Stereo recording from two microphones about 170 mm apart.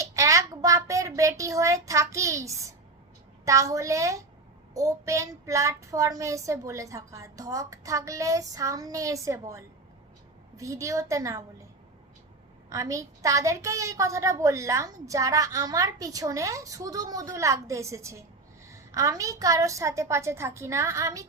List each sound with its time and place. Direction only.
0.0 s a sound: 20° right (ahead or behind)
3.4 s a woman's voice: 20° right (ahead or behind)
12.7 s a woman's voice: 20° right (ahead or behind)